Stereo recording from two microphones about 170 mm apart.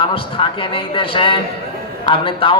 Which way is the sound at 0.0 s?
30° left (ahead or behind).